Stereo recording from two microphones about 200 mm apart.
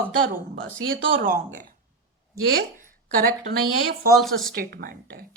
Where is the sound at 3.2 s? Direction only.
45° right (ahead or behind).